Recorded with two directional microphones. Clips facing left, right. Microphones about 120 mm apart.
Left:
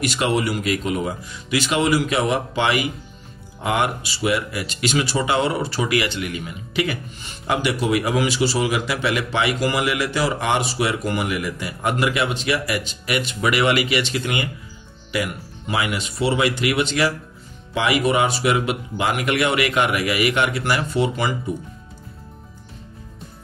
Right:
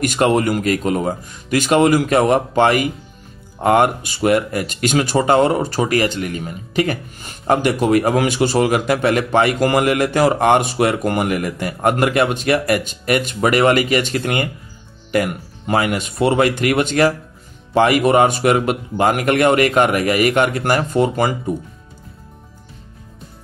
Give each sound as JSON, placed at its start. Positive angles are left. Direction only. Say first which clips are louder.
{"t": 0.0, "sound": "speech", "louder": "right 5 dB", "side_deg": -50}